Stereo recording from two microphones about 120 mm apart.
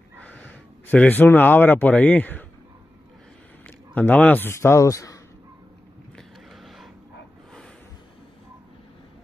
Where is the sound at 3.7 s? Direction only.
15° left (ahead or behind).